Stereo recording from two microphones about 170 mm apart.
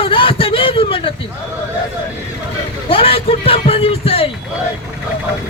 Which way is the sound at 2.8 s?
35° left (ahead or behind).